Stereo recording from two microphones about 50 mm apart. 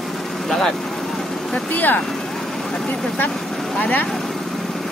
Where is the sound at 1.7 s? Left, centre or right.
Left.